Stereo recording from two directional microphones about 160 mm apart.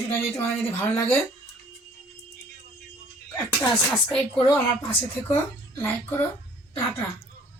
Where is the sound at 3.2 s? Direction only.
5° left (ahead or behind).